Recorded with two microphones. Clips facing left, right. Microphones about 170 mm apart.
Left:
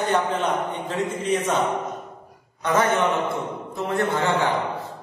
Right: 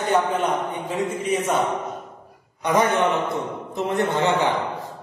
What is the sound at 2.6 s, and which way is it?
A man's voice, 15° right (ahead or behind).